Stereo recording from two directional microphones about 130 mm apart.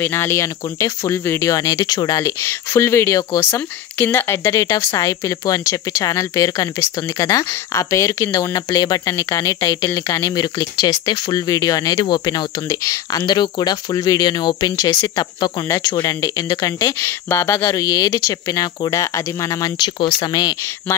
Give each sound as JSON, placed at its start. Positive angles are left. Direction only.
{"t": 0.0, "sound": "speech", "side_deg": 15}